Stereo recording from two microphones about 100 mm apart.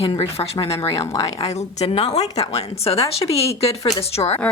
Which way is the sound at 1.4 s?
90° left.